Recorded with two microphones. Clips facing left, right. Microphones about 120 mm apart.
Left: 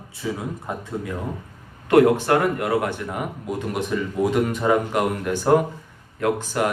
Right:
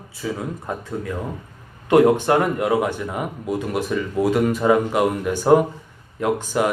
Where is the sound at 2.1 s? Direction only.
20° right (ahead or behind).